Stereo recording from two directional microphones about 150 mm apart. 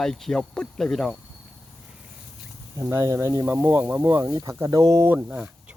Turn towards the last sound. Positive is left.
turn(degrees=-10)  # may be behind; listen again after turning